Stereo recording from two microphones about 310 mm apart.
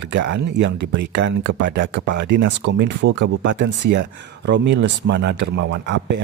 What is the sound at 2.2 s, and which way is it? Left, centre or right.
Speech, right.